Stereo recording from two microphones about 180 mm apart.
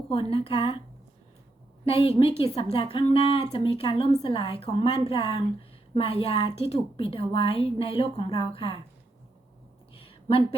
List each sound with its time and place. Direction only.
0.1 s a woman's voice: 30° left (ahead or behind)
1.8 s a woman's voice: 30° left (ahead or behind)
9.9 s a sound: 30° left (ahead or behind)